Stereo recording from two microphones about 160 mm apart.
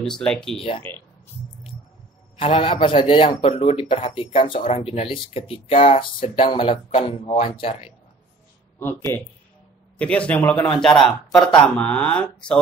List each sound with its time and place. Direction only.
0.0 s speech: 5° left (ahead or behind)
0.6 s speech: 35° left (ahead or behind)
2.3 s speech: 35° left (ahead or behind)
9.9 s speech: 5° left (ahead or behind)